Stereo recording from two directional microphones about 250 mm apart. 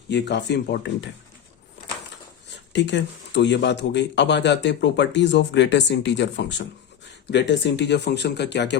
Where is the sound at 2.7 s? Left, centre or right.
Left.